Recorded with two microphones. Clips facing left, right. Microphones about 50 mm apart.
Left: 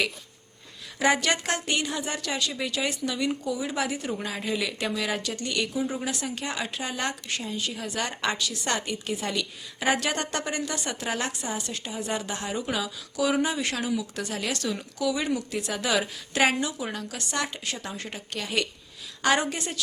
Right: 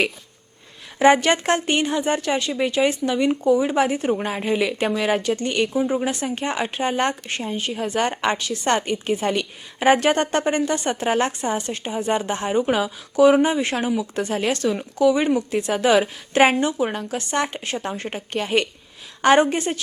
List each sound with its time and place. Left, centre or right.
0.9 s a woman's voice: right